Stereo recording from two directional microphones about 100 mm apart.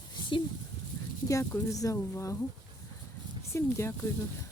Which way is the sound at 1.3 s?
30° left (ahead or behind).